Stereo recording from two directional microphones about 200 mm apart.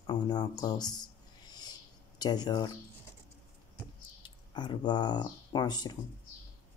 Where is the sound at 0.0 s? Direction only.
20° left (ahead or behind).